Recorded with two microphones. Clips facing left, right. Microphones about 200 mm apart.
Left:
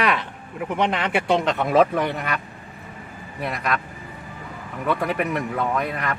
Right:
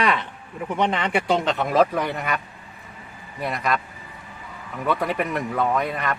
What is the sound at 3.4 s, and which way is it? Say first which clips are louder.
Speech: right 1 dB; centre (ahead or behind).